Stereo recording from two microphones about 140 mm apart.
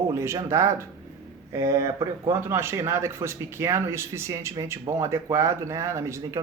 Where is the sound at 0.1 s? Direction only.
20° right (ahead or behind).